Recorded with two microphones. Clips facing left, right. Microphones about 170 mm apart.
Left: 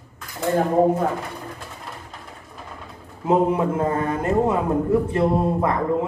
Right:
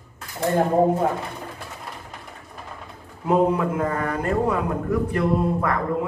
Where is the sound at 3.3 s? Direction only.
25° left (ahead or behind).